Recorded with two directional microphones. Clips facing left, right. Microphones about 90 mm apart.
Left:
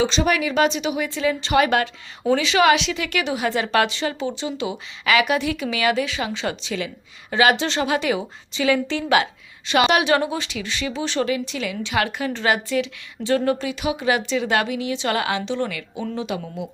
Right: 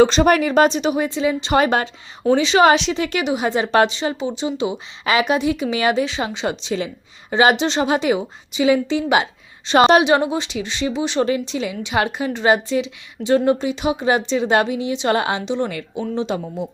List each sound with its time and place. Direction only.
0.0 s speech: 50° right (ahead or behind)
1.1 s a woman's voice: 20° right (ahead or behind)
9.6 s a woman's voice: 35° right (ahead or behind)
10.0 s a woman's voice: 20° right (ahead or behind)